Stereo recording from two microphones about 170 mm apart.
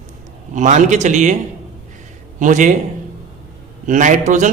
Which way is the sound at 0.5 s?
45° right (ahead or behind).